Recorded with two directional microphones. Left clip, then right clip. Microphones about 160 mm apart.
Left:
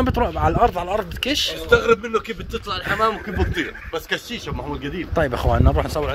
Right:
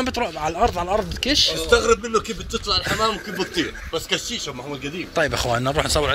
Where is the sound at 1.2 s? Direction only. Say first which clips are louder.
Right 3 dB; 45° left (ahead or behind).